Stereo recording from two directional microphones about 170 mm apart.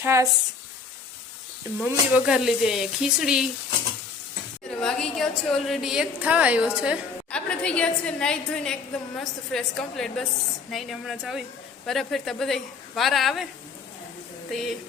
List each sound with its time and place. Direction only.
0.0 s speech: 15° right (ahead or behind)
1.8 s a woman's voice: 5° right (ahead or behind)
4.8 s a woman's voice: 5° left (ahead or behind)
7.3 s a woman's voice: 5° left (ahead or behind)
14.5 s a woman's voice: centre (ahead or behind)